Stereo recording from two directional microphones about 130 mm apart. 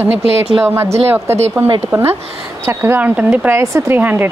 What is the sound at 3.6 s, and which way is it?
Speech, 25° right (ahead or behind).